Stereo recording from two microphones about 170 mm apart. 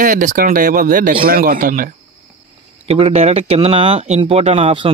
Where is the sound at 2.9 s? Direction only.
35° right (ahead or behind).